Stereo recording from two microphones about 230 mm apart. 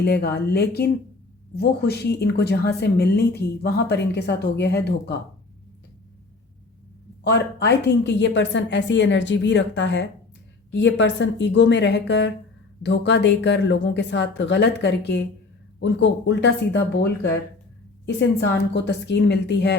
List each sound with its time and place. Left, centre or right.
0.0 s a woman's voice: left
7.3 s a woman's voice: left